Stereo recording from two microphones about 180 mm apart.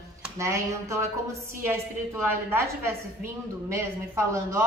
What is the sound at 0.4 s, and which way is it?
A woman's voice, 15° right (ahead or behind).